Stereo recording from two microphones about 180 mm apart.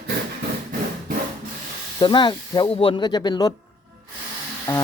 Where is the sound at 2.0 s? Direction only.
25° left (ahead or behind).